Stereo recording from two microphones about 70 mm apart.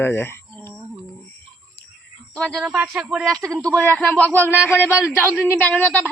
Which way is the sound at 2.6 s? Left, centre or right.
Centre.